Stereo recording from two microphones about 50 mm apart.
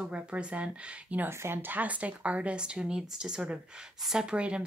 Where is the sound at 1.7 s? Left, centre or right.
Right.